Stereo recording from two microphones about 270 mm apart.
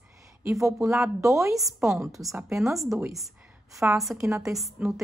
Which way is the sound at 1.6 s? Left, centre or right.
Centre.